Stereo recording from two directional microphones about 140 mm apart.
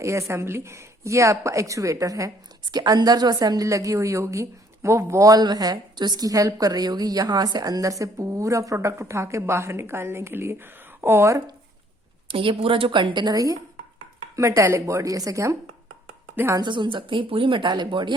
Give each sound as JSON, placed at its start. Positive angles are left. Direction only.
{"t": 0.0, "sound": "a woman's voice", "side_deg": -20}
{"t": 12.3, "sound": "a woman's voice", "side_deg": -40}
{"t": 16.6, "sound": "speech", "side_deg": -35}